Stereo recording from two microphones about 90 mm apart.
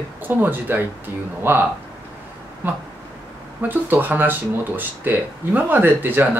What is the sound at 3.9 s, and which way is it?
Speech, 20° right (ahead or behind).